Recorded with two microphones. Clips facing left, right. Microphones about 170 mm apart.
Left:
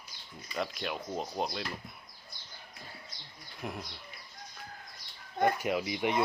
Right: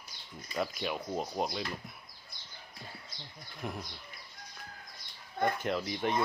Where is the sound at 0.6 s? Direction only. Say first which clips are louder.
Right 1 dB; centre (ahead or behind).